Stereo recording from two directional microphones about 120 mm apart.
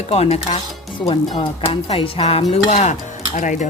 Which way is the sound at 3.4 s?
90° left.